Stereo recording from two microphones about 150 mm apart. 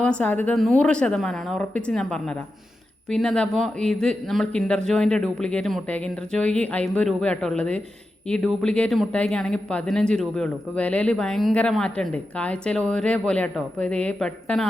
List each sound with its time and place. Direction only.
0.0 s speech: 10° left (ahead or behind)
0.5 s speech: centre (ahead or behind)